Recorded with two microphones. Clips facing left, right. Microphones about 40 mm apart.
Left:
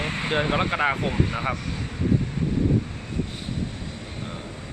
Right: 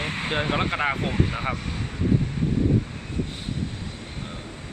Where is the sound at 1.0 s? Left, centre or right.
Right.